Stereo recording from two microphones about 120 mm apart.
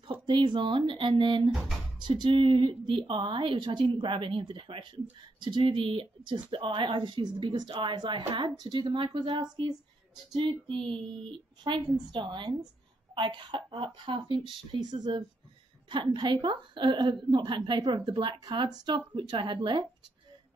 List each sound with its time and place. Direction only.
0.0 s a woman's voice: 40° right (ahead or behind)